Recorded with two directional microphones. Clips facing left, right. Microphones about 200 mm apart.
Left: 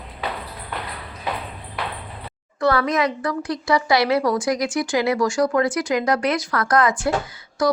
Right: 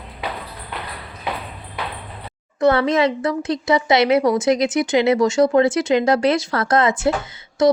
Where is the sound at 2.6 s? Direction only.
25° right (ahead or behind).